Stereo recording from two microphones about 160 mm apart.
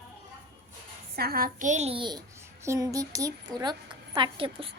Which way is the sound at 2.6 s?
20° right (ahead or behind).